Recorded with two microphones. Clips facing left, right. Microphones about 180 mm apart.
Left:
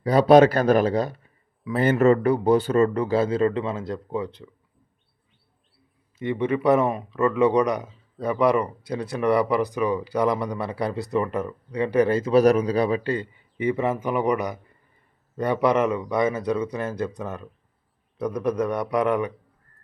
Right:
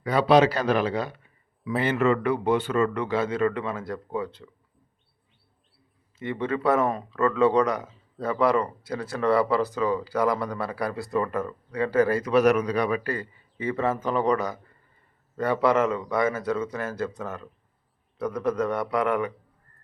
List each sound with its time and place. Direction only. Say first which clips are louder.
0.0 s speech: left 5 dB; 40° left (ahead or behind); by 4.4 s 15° left (ahead or behind)
6.1 s speech: left 4 dB; 15° left (ahead or behind)